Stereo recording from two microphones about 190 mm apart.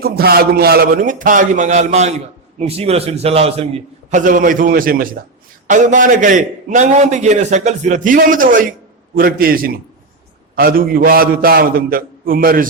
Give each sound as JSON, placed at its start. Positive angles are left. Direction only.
{"t": 0.0, "sound": "a man's voice", "side_deg": -55}
{"t": 4.1, "sound": "a man's voice", "side_deg": -45}